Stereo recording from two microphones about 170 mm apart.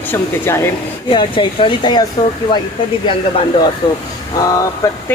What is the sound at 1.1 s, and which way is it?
Speech, 30° left (ahead or behind).